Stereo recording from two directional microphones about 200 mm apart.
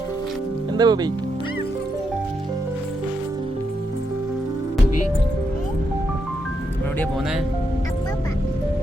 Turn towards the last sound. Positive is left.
turn(degrees=10)  # may be behind; listen again after turning